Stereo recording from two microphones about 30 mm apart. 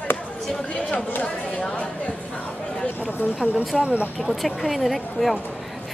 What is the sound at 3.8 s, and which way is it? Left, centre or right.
Speech, right.